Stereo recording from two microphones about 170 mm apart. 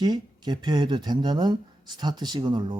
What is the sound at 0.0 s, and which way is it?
Speech, 25° right (ahead or behind).